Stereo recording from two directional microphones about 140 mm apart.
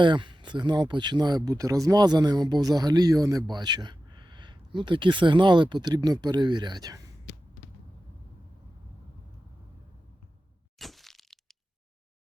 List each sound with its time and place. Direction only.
0.0 s speech: 35° right (ahead or behind)
10.8 s crack: centre (ahead or behind)